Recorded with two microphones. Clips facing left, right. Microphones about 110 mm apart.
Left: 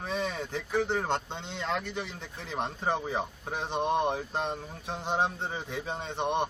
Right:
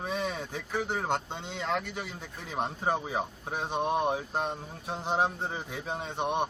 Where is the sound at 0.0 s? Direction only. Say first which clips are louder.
Even; 10° right (ahead or behind).